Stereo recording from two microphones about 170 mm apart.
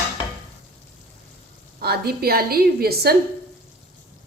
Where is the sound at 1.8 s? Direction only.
65° right (ahead or behind).